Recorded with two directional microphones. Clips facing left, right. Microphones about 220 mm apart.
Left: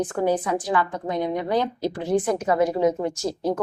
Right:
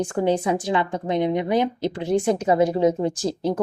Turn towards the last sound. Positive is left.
turn(degrees=-30)  # may be behind; listen again after turning